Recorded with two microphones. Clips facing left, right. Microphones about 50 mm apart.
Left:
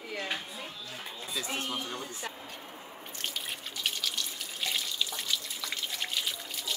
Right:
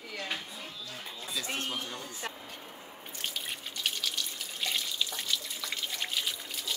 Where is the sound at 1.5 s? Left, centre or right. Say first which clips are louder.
Left 2 dB; centre.